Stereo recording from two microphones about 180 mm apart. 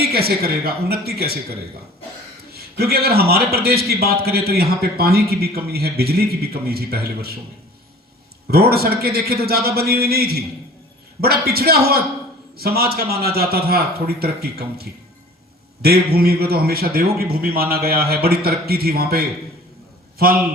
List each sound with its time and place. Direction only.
0.0 s a man's voice: 60° right (ahead or behind)
2.5 s a man's voice: 60° right (ahead or behind)
8.4 s a man's voice: 60° right (ahead or behind)